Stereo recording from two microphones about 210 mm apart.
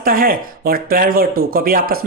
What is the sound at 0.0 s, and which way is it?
Speech, 45° right (ahead or behind).